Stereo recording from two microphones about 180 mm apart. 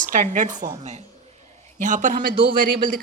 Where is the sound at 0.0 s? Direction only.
50° right (ahead or behind).